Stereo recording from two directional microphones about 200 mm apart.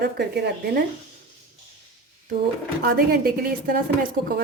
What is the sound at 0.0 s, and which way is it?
Speech, 50° right (ahead or behind).